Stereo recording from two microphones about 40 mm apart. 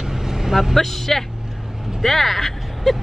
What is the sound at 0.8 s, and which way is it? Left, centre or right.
Speech, centre.